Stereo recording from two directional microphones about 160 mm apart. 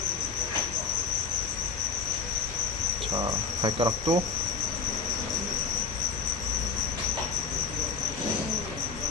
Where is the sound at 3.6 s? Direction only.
30° right (ahead or behind).